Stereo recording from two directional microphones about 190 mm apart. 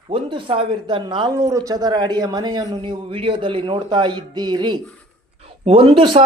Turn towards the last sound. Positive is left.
turn(degrees=-25)  # may be behind; listen again after turning